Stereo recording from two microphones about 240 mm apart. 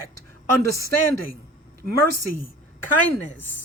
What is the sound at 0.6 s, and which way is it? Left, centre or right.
Speech, left.